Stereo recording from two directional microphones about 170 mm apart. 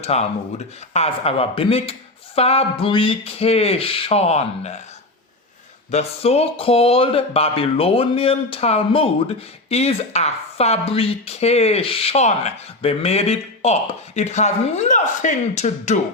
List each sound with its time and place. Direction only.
0.0 s speech: 40° left (ahead or behind)
5.9 s speech: 40° left (ahead or behind)